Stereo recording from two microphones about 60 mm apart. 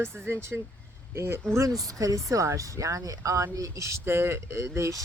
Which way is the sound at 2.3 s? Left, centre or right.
Right.